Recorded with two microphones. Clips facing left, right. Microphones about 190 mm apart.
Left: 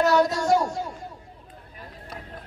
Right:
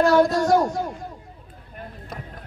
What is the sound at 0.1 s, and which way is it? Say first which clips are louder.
Speech: right 3 dB; 50° right (ahead or behind).